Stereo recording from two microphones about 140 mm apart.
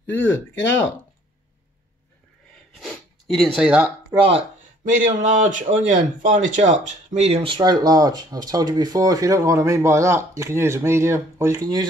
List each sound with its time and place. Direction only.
0.0 s speech: 15° left (ahead or behind)
3.4 s speech: 5° right (ahead or behind)
4.1 s speech: 30° right (ahead or behind)
4.8 s speech: 65° right (ahead or behind)
7.5 s speech: 30° right (ahead or behind)